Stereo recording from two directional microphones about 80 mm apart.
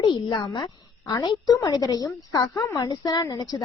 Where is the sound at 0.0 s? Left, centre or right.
Left.